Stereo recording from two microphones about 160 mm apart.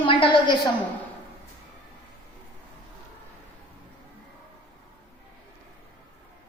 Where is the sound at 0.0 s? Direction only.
30° left (ahead or behind).